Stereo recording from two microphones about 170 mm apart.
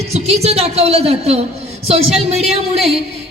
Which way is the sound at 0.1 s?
40° right (ahead or behind).